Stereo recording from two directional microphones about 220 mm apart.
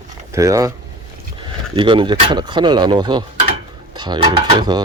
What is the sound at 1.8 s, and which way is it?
Speech, 20° right (ahead or behind).